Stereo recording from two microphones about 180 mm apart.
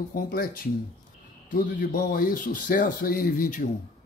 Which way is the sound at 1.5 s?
50° left (ahead or behind).